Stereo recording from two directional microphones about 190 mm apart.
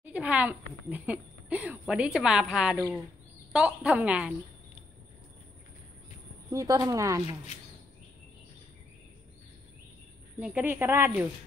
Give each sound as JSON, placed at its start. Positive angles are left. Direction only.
{"t": 0.0, "sound": "speech", "side_deg": -5}
{"t": 6.5, "sound": "speech", "side_deg": -20}
{"t": 10.4, "sound": "speech", "side_deg": -10}